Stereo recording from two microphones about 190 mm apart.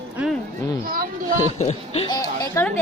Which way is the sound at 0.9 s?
50° right (ahead or behind).